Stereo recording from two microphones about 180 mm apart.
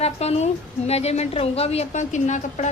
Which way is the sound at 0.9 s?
35° left (ahead or behind).